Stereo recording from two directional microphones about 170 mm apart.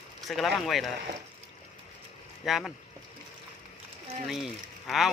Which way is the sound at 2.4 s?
Centre (ahead or behind).